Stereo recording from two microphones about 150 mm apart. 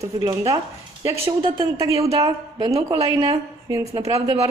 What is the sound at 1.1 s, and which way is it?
Speech, 40° right (ahead or behind).